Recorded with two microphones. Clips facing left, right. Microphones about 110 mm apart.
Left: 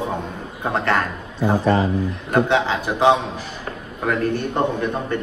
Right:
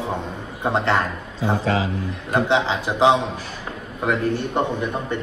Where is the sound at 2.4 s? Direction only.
20° right (ahead or behind).